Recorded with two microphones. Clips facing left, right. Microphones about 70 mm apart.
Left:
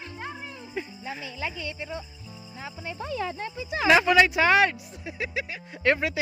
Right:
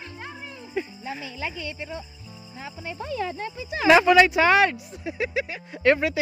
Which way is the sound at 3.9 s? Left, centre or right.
Right.